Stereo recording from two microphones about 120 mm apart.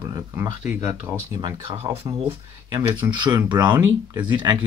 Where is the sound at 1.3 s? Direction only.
40° right (ahead or behind).